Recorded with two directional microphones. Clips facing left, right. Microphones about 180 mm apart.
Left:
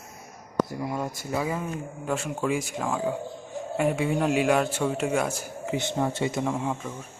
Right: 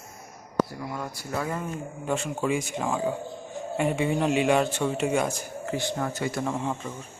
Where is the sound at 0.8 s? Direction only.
20° left (ahead or behind).